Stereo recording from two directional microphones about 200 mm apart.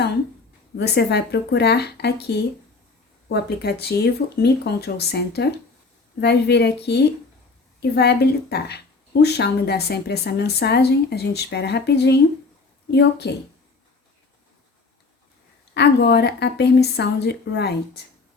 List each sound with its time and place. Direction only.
0.8 s a woman's voice: 55° left (ahead or behind)
15.7 s a woman's voice: 55° left (ahead or behind)